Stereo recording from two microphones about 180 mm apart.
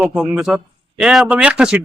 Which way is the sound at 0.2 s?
Centre (ahead or behind).